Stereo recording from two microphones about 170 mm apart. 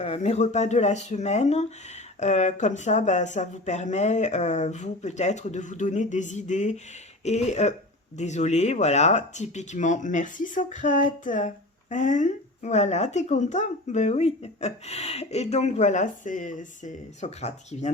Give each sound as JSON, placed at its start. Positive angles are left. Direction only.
{"t": 0.0, "sound": "speech", "side_deg": 40}